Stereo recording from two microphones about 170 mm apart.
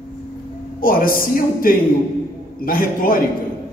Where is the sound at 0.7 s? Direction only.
55° left (ahead or behind).